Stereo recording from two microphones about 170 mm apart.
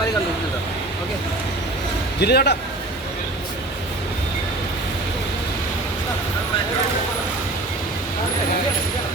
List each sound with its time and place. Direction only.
2.2 s speech: 70° left (ahead or behind)